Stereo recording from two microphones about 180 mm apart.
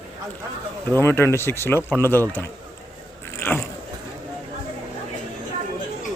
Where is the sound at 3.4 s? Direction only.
15° left (ahead or behind).